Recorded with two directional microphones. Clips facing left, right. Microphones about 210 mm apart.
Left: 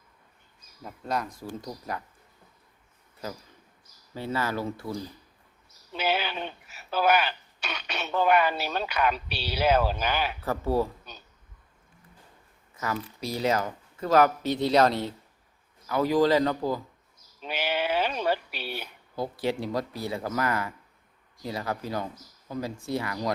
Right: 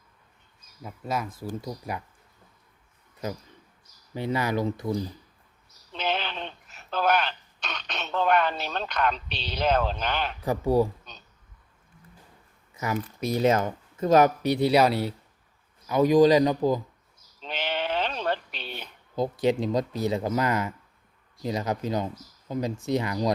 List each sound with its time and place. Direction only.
0.8 s speech: 5° right (ahead or behind)
4.1 s speech: 15° right (ahead or behind)
5.9 s speech: 10° left (ahead or behind)
10.4 s speech: 15° right (ahead or behind)
11.1 s a sound: 10° left (ahead or behind)
12.8 s speech: 20° right (ahead or behind)
17.4 s a sound: 10° left (ahead or behind)
19.1 s speech: 20° right (ahead or behind)